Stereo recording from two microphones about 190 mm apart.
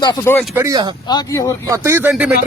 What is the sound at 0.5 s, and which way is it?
Speech, 20° right (ahead or behind).